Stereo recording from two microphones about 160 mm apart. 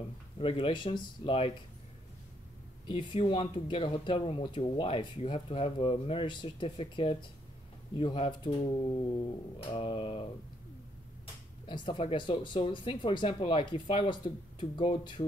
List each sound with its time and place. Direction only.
0.4 s speech: 35° left (ahead or behind)
2.9 s speech: 30° left (ahead or behind)
11.6 s speech: 30° left (ahead or behind)